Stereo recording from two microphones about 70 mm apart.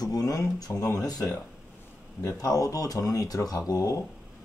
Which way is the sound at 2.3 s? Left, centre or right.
Left.